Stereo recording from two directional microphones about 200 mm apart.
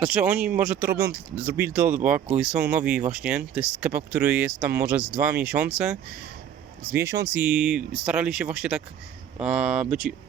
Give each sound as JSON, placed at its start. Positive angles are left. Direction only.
{"t": 0.0, "sound": "speech", "side_deg": -5}